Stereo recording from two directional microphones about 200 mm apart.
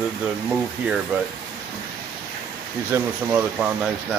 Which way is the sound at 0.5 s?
5° right (ahead or behind).